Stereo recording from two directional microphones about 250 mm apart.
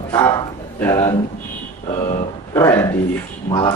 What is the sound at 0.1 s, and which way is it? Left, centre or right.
Speech, centre.